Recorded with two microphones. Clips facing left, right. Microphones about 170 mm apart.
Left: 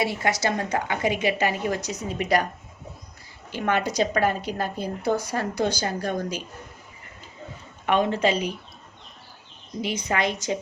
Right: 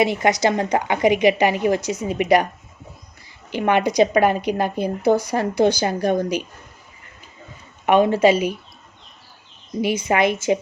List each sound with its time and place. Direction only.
0.0 s a woman's voice: 20° right (ahead or behind)
3.5 s a woman's voice: 15° right (ahead or behind)
7.9 s a woman's voice: 10° right (ahead or behind)
9.8 s a woman's voice: 10° right (ahead or behind)